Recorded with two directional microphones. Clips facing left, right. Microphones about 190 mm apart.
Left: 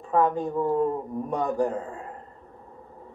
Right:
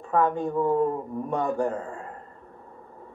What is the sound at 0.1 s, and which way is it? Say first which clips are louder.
Speech: even; centre (ahead or behind).